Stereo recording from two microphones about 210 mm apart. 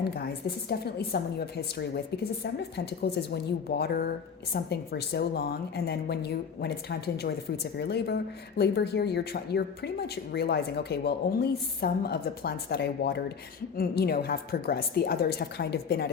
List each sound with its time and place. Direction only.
0.4 s a woman's voice: 50° left (ahead or behind)